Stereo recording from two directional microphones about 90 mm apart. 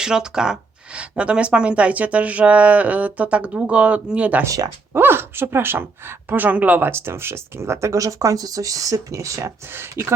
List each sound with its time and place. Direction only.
0.0 s speech: 5° right (ahead or behind)
4.4 s speech: 40° right (ahead or behind)
4.9 s a woman's voice: 25° right (ahead or behind)